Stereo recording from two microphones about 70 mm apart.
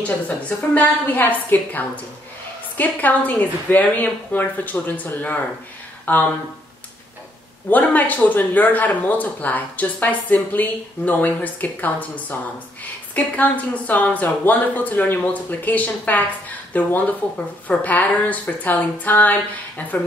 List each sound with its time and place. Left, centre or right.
0.0 s speech: left
7.7 s speech: left